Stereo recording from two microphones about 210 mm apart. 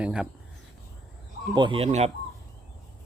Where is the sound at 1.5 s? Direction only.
25° right (ahead or behind).